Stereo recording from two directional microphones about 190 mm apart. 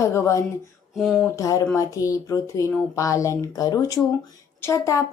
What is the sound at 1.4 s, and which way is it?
A woman's voice, 15° left (ahead or behind).